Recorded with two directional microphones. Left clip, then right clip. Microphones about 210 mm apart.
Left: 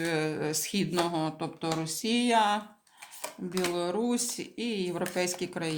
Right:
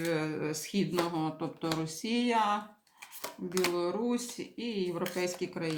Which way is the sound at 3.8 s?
40° left (ahead or behind).